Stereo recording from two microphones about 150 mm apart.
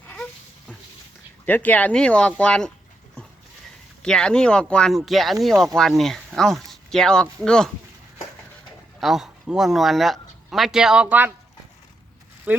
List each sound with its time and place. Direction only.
1.5 s speech: 10° left (ahead or behind)
4.0 s speech: 5° left (ahead or behind)
9.0 s speech: centre (ahead or behind)
12.5 s speech: 10° right (ahead or behind)